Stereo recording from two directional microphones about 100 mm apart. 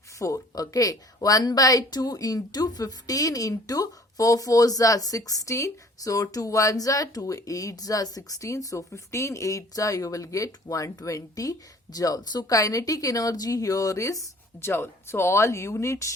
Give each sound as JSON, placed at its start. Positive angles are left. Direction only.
{"t": 0.2, "sound": "speech", "side_deg": 35}